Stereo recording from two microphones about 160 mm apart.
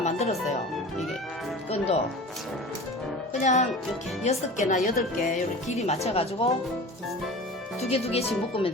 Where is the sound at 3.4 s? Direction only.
50° left (ahead or behind).